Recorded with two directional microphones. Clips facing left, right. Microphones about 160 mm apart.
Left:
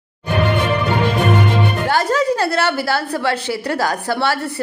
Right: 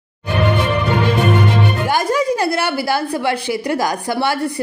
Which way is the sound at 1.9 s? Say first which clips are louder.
Left 1 dB; 10° right (ahead or behind).